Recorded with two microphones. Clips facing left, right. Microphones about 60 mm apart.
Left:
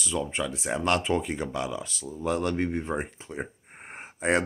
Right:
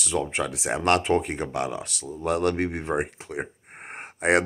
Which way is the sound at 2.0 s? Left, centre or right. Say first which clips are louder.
Right 4 dB; right.